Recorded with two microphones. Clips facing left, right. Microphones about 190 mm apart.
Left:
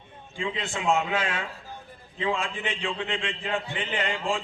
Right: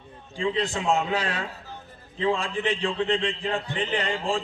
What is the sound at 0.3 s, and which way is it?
A man's voice, 35° right (ahead or behind).